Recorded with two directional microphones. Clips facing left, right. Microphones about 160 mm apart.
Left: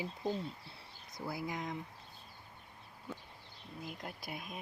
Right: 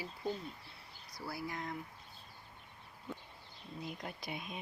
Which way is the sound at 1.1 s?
20° left (ahead or behind).